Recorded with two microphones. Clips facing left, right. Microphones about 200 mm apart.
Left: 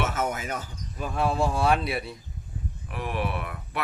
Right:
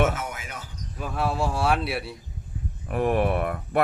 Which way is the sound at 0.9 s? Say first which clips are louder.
Left 1 dB; 5° right (ahead or behind).